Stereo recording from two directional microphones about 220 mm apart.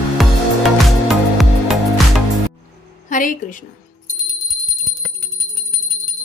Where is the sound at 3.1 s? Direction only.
40° left (ahead or behind).